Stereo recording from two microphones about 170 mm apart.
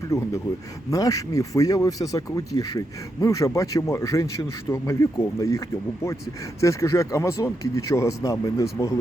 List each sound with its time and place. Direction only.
0.1 s speech: 15° left (ahead or behind)